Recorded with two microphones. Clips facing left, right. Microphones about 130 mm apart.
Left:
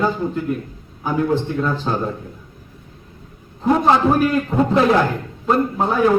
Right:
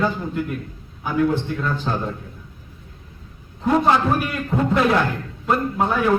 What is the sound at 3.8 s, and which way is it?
A man's voice, 25° left (ahead or behind).